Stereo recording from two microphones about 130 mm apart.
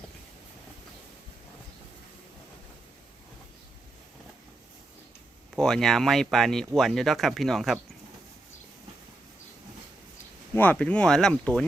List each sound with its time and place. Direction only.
5.5 s speech: 5° left (ahead or behind)
10.5 s speech: 10° left (ahead or behind)